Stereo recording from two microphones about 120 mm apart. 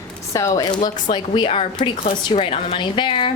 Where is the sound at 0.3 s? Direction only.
30° left (ahead or behind).